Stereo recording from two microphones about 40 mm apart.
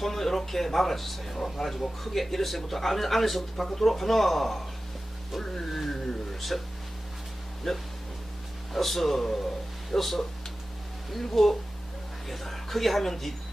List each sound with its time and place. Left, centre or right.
0.0 s speech: centre
5.7 s a sound: centre
7.6 s speech: centre